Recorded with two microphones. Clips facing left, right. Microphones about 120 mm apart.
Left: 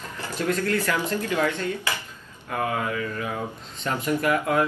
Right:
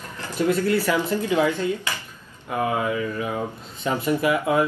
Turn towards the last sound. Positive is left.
turn(degrees=-10)  # may be behind; listen again after turning